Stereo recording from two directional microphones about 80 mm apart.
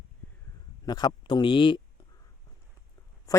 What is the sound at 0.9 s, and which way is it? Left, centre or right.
Speech, left.